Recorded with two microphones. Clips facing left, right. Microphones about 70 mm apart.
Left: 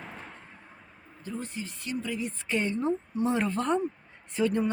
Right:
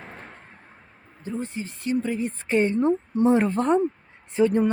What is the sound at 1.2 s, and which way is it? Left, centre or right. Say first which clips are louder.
Speech: right 6 dB; right.